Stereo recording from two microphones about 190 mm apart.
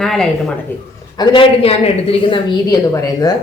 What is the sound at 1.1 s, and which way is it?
Speech, 30° left (ahead or behind).